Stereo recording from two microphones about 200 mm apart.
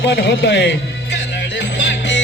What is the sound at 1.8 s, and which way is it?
Music, 65° left (ahead or behind).